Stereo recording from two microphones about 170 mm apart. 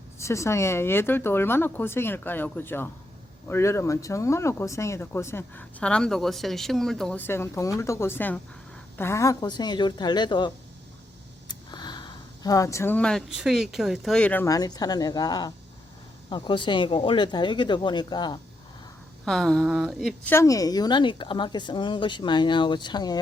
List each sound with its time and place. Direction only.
0.2 s speech: 15° left (ahead or behind)
14.4 s speech: 20° left (ahead or behind)
19.2 s speech: centre (ahead or behind)
20.2 s speech: 15° left (ahead or behind)